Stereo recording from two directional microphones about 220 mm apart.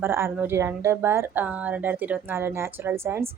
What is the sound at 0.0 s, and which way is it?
A woman's voice, 10° right (ahead or behind).